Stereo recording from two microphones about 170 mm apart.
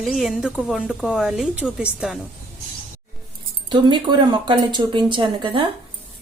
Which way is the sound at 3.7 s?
30° right (ahead or behind).